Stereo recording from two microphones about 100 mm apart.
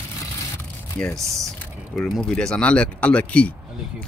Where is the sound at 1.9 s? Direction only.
5° left (ahead or behind).